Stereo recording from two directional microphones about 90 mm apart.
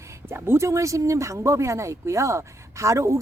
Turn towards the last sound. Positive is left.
turn(degrees=-35)  # may be behind; listen again after turning